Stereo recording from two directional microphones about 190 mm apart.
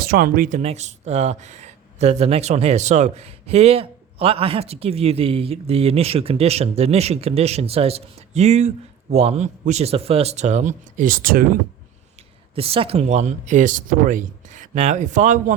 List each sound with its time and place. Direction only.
0.0 s speech: 50° right (ahead or behind)
12.5 s speech: 30° right (ahead or behind)